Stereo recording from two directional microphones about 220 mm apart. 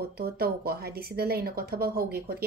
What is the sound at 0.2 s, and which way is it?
Speech, 45° right (ahead or behind).